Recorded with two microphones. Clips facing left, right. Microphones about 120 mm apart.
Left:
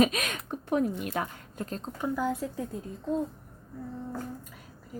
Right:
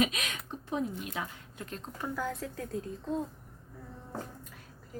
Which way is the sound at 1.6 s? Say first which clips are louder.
Left 5 dB; 35° left (ahead or behind).